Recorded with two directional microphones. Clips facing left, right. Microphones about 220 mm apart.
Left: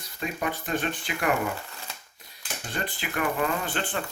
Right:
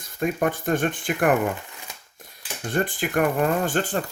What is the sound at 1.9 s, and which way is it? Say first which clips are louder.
Crushing: even; 15° right (ahead or behind).